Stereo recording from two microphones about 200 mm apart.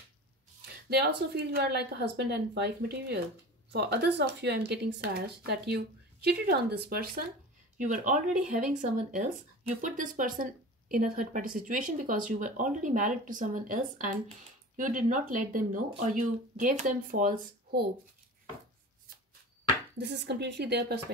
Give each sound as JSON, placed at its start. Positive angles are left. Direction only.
{"t": 0.8, "sound": "speech", "side_deg": -55}
{"t": 7.7, "sound": "speech", "side_deg": -40}
{"t": 20.0, "sound": "speech", "side_deg": -55}